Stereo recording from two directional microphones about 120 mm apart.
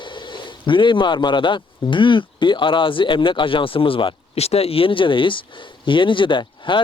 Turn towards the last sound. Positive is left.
turn(degrees=40)  # may be behind; listen again after turning